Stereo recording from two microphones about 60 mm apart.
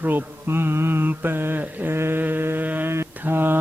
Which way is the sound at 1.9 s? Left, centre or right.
Right.